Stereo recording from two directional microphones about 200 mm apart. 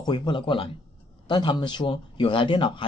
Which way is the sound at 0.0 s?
25° left (ahead or behind).